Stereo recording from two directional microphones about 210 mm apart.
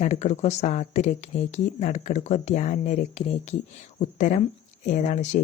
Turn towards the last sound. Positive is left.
turn(degrees=35)  # may be behind; listen again after turning